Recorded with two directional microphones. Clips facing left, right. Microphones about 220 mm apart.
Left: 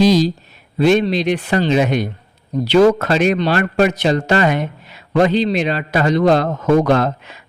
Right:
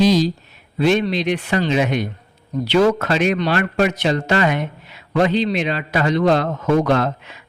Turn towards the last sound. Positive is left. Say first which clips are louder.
# left 3 dB
turn(degrees=40)  # may be behind; listen again after turning